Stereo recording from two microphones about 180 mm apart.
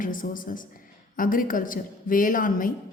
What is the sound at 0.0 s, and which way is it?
A woman's voice, 50° left (ahead or behind).